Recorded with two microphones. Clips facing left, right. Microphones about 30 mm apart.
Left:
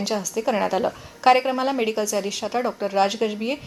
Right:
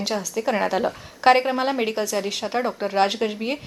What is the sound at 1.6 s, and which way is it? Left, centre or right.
A woman's voice, centre.